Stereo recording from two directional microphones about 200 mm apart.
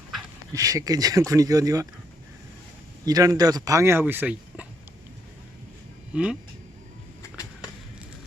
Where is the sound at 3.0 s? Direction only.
15° right (ahead or behind).